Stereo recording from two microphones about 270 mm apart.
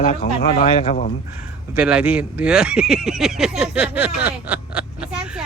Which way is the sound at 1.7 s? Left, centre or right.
Centre.